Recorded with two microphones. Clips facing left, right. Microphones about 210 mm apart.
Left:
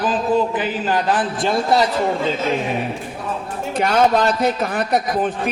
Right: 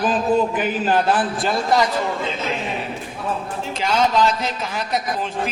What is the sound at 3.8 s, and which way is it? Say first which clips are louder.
A man's voice: left 3 dB; 55° left (ahead or behind).